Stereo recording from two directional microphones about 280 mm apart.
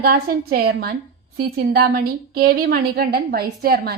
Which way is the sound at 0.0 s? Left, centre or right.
Right.